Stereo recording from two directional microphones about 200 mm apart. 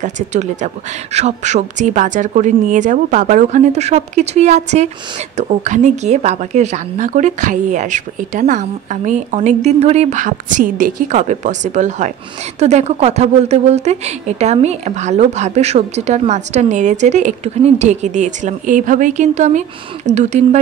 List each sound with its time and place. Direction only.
0.0 s speech: 35° right (ahead or behind)